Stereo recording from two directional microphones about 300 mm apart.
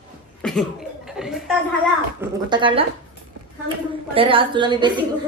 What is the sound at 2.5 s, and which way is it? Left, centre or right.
Speech, centre.